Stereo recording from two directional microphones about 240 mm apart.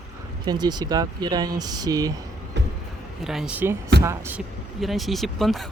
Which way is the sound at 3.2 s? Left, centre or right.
Centre.